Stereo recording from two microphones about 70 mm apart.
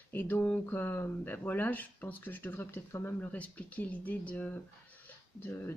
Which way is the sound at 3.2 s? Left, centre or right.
Left.